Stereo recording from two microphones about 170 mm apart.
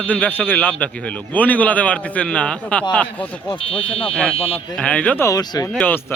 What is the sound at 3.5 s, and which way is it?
Speech, 35° left (ahead or behind).